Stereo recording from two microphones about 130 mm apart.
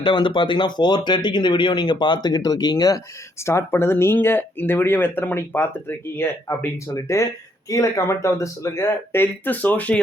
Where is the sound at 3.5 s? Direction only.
20° left (ahead or behind).